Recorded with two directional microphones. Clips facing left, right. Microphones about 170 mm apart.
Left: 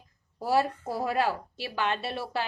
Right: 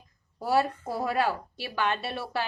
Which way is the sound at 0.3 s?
30° left (ahead or behind).